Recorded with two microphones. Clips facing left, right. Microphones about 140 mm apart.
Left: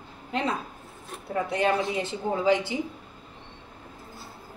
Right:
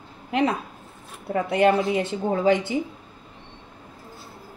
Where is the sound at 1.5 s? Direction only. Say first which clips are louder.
Right 6 dB; 60° right (ahead or behind).